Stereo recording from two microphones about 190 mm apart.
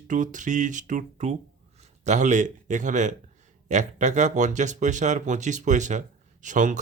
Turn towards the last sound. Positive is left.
turn(degrees=-40)  # may be behind; listen again after turning